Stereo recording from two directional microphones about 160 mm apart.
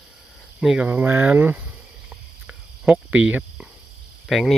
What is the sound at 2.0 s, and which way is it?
Cricket, 5° right (ahead or behind).